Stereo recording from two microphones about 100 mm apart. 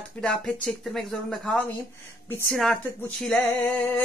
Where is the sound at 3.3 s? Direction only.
15° left (ahead or behind).